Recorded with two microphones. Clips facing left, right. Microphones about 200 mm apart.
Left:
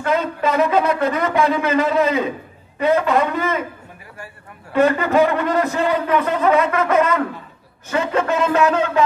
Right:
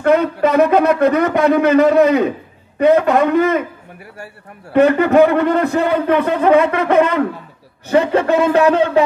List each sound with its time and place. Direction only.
0.0 s a man's voice: 65° right (ahead or behind)
4.7 s a man's voice: 60° right (ahead or behind)